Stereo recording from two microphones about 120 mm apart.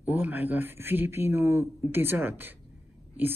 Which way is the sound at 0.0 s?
15° right (ahead or behind).